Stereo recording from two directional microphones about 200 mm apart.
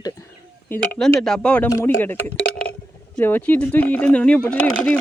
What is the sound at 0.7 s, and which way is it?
Speech, 10° left (ahead or behind).